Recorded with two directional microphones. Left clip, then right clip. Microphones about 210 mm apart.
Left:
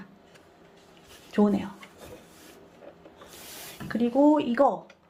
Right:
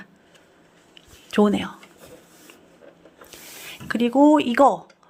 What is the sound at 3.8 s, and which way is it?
Speech, 35° right (ahead or behind).